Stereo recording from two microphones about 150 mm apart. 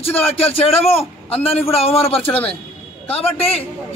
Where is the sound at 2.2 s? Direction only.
10° left (ahead or behind).